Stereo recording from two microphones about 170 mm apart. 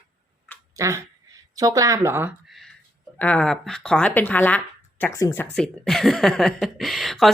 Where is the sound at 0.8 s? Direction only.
20° right (ahead or behind).